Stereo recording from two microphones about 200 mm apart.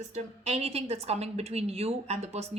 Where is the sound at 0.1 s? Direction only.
30° right (ahead or behind).